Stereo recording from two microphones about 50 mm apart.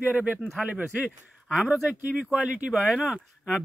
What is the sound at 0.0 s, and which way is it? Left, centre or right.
Speech, right.